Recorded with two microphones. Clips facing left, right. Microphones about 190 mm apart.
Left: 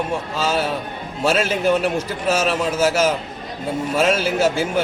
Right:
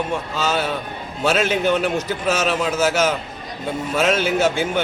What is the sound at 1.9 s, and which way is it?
A man's voice, 30° left (ahead or behind).